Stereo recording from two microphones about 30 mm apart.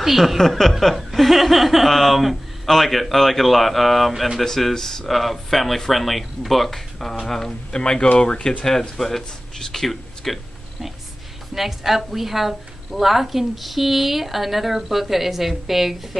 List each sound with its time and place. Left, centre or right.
0.0 s speech: centre
0.4 s speech: centre
4.7 s speech: centre
5.0 s speech: centre
7.7 s speech: left
8.9 s speech: centre
11.5 s a woman's voice: centre